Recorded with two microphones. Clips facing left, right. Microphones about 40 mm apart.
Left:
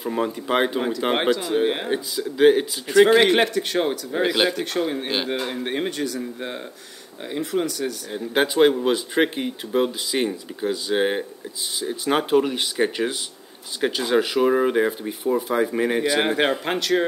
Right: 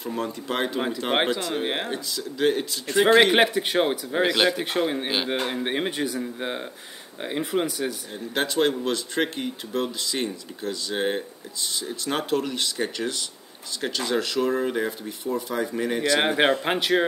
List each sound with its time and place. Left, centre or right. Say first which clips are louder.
0.0 s speech: left 5 dB; centre
1.4 s speech: left 6 dB; centre
1.9 s speech: left 5 dB; centre
2.9 s speech: left 4 dB; centre
3.2 s a man's voice: even; centre
4.3 s speech: left 1 dB; centre
4.6 s a man's voice: left 1 dB; centre
8.1 s speech: left 5 dB; centre
16.2 s a man's voice: even; centre